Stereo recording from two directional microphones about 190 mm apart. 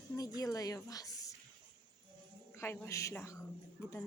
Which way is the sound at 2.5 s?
10° left (ahead or behind).